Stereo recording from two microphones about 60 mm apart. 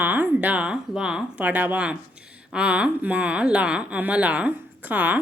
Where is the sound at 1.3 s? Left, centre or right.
Right.